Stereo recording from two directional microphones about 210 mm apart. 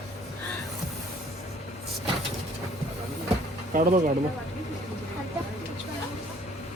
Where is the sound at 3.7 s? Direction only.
40° right (ahead or behind).